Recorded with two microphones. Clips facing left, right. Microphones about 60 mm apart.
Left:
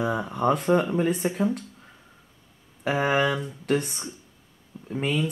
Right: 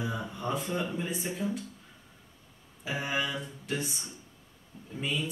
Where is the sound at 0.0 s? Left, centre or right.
Left.